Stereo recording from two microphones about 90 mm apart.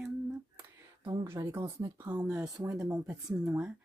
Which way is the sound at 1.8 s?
50° right (ahead or behind).